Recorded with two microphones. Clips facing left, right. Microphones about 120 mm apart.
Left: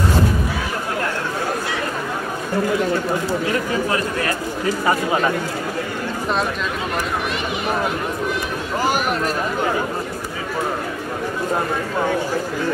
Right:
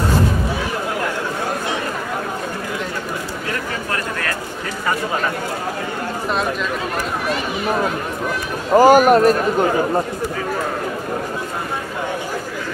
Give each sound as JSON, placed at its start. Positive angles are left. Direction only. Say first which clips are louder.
{"t": 8.7, "sound": "speech", "louder": "right 11 dB", "side_deg": -45}